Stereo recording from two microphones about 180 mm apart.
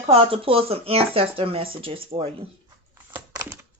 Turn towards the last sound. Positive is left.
turn(degrees=-15)  # may be behind; listen again after turning